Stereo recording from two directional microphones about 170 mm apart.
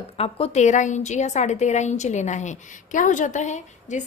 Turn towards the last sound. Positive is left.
turn(degrees=45)  # may be behind; listen again after turning